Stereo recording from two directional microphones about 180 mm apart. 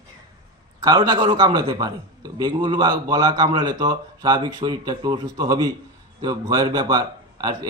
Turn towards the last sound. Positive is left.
turn(degrees=-20)  # may be behind; listen again after turning